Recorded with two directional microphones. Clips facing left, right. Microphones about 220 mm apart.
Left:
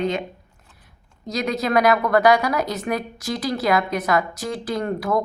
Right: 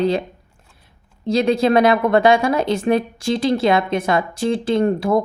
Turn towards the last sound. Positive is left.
turn(degrees=-25)  # may be behind; listen again after turning